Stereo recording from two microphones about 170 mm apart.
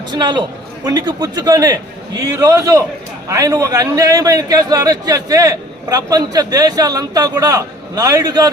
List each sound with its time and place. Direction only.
0.1 s a man's voice: 25° right (ahead or behind)